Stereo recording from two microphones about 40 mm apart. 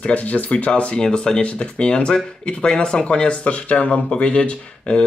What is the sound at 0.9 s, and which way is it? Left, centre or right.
Speech, left.